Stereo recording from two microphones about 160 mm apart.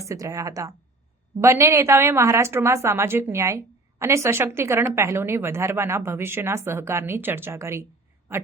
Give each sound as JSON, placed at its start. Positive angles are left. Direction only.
{"t": 0.0, "sound": "a woman's voice", "side_deg": -20}